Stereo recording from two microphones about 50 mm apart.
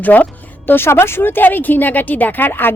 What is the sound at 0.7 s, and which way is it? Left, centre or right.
Speech, left.